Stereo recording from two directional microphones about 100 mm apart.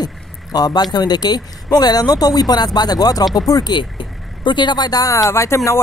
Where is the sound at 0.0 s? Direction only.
40° left (ahead or behind).